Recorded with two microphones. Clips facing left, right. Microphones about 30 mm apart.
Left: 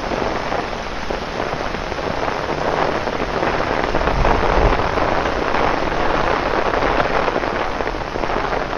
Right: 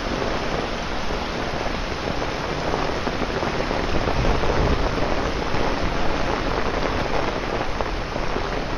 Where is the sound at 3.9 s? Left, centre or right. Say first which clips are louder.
Left 7 dB; left.